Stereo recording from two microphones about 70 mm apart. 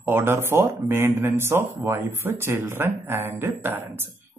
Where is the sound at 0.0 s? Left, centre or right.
Right.